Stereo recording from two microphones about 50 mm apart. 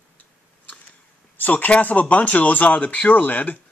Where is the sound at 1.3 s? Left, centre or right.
Left.